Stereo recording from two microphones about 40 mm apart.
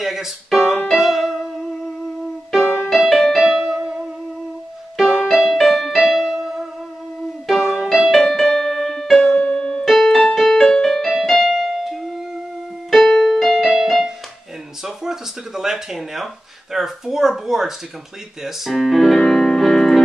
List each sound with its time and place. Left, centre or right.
0.0 s music: centre
8.1 s music: centre
9.2 s music: left
9.8 s keyboard: centre
14.8 s a sound: centre
16.7 s speech: centre
18.4 s piano: centre